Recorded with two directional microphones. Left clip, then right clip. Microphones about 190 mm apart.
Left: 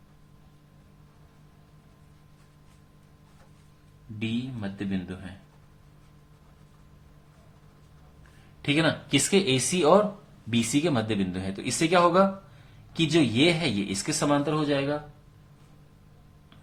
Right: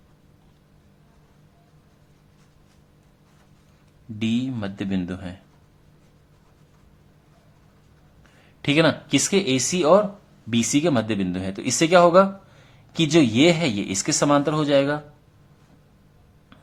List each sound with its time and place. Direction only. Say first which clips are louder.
4.2 s speech: right 7 dB; 50° right (ahead or behind)
8.6 s speech: right 6 dB; 35° right (ahead or behind)